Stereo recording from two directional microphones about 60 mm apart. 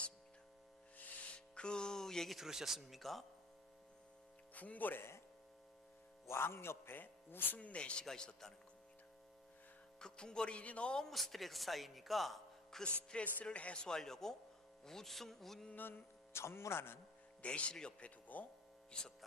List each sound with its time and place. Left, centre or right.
0.9 s music: left; by 2.4 s centre
2.4 s speech: centre
4.5 s music: left
6.2 s a man's voice: left; by 8.5 s centre
10.0 s speech: centre
12.8 s music: centre
13.8 s speech: centre
15.7 s a man's voice: left
16.3 s a man's voice: left
17.4 s speech: centre
18.3 s speech: left
18.9 s speech: centre